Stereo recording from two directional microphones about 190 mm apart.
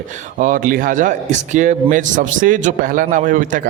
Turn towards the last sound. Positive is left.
turn(degrees=-45)  # may be behind; listen again after turning